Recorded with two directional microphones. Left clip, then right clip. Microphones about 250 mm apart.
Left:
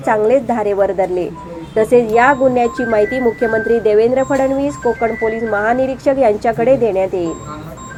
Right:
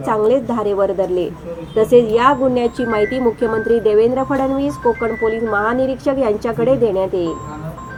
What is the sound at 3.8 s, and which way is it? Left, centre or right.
Speech, centre.